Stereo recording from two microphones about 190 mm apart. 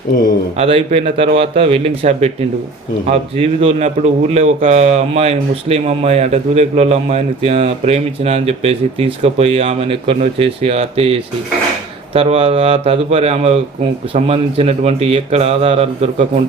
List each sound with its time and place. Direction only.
0.5 s speech: 30° right (ahead or behind)